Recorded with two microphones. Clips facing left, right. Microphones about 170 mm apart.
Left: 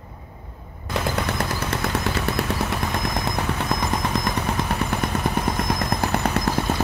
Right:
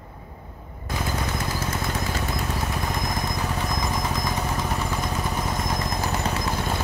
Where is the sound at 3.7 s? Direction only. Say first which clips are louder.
Left 3 dB; 65° left (ahead or behind).